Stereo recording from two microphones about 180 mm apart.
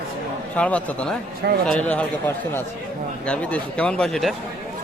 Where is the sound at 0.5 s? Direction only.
5° left (ahead or behind).